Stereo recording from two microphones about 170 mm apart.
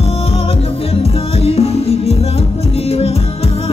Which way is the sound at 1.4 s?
35° left (ahead or behind).